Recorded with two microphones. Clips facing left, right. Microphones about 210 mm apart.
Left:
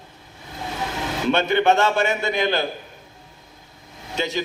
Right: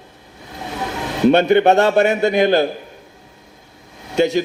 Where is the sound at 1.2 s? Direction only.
45° right (ahead or behind).